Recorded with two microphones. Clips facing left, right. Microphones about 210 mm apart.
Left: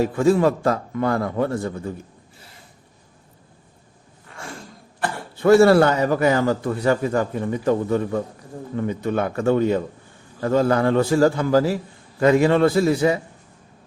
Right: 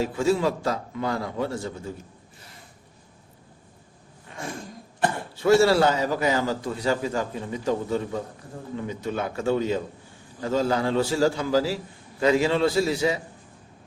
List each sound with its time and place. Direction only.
0.0 s a man's voice: 55° left (ahead or behind)
5.0 s a sound: 20° right (ahead or behind)
5.4 s a man's voice: 55° left (ahead or behind)